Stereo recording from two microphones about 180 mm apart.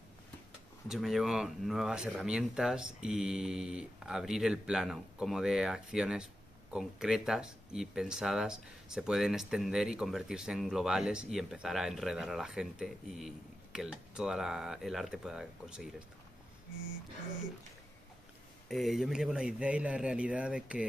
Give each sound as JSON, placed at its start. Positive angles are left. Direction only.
{"t": 0.8, "sound": "speech", "side_deg": 0}
{"t": 18.7, "sound": "speech", "side_deg": 0}